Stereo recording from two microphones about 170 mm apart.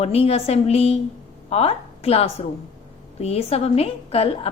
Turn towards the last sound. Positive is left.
turn(degrees=35)  # may be behind; listen again after turning